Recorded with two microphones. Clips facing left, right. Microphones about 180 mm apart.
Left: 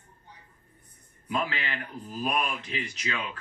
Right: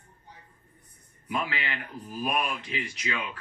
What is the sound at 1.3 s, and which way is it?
Speech, 20° left (ahead or behind).